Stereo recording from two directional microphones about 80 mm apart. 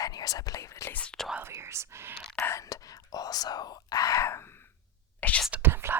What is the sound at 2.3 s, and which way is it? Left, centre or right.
Whispering, left.